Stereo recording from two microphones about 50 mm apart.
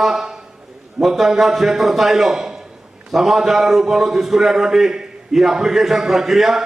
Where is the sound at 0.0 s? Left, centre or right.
Centre.